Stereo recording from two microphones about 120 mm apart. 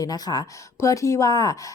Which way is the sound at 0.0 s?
30° left (ahead or behind).